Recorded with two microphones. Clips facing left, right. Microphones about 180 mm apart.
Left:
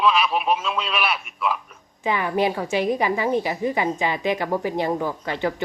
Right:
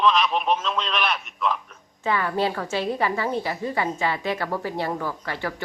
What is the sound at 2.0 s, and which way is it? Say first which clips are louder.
Speech: left 2 dB; 15° left (ahead or behind).